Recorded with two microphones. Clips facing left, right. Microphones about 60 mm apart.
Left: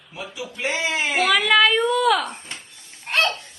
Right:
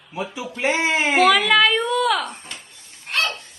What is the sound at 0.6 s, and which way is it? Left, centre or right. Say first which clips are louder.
Speech: right 4 dB; right.